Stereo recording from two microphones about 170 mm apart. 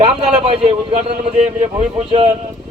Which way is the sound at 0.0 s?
35° right (ahead or behind).